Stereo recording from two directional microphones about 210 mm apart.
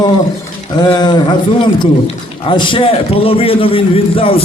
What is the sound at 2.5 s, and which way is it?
A man's voice, 25° left (ahead or behind).